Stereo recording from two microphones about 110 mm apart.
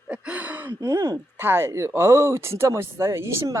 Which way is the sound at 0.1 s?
10° right (ahead or behind).